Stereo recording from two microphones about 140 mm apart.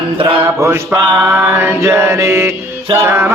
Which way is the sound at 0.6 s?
20° right (ahead or behind).